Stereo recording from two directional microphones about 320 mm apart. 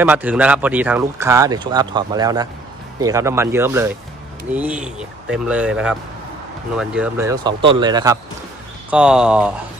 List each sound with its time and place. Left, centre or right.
0.0 s speech: centre